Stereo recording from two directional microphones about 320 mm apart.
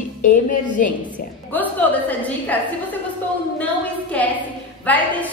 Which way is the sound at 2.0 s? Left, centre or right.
Centre.